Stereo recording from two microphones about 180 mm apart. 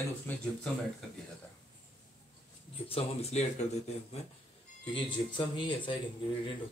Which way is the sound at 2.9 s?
35° left (ahead or behind).